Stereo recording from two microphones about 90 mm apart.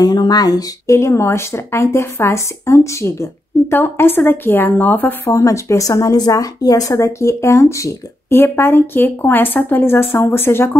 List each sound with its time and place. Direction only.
0.0 s speech: 50° left (ahead or behind)
0.9 s a woman's voice: 30° left (ahead or behind)
5.2 s a woman's voice: 35° left (ahead or behind)